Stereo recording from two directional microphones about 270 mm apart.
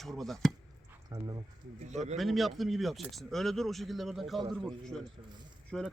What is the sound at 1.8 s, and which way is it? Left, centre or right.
Speech, right.